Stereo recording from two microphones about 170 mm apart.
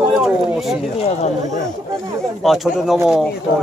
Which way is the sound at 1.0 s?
40° left (ahead or behind).